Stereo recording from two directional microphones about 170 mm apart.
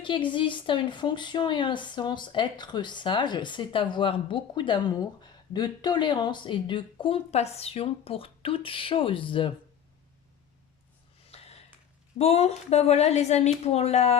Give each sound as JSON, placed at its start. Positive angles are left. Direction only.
{"t": 0.0, "sound": "speech", "side_deg": 30}
{"t": 11.3, "sound": "a sound", "side_deg": 35}
{"t": 12.1, "sound": "speech", "side_deg": 40}